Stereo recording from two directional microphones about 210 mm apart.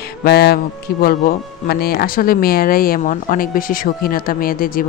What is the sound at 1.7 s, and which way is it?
A woman's voice, 45° left (ahead or behind).